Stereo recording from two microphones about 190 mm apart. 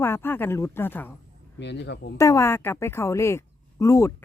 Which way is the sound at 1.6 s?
65° left (ahead or behind).